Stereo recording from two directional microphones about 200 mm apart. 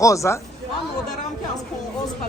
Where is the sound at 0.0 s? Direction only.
15° left (ahead or behind).